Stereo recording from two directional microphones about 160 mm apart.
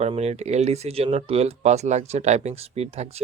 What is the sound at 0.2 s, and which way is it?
Speech, 45° right (ahead or behind).